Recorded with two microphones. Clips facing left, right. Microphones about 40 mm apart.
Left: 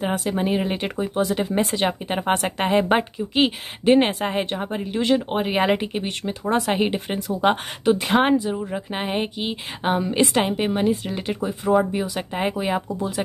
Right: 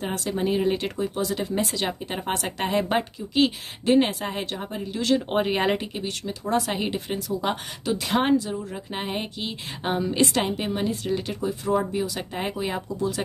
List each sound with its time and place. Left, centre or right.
0.0 s speech: centre
4.0 s speech: left